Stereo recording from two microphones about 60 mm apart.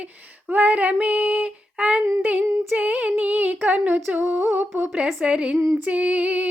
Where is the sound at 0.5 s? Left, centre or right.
Right.